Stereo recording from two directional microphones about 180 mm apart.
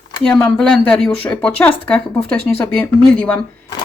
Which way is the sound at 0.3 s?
5° left (ahead or behind).